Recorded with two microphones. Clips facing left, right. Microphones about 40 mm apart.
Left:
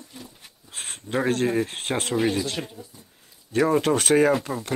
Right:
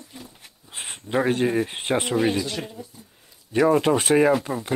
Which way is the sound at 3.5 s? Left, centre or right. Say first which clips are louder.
Right 2 dB; centre.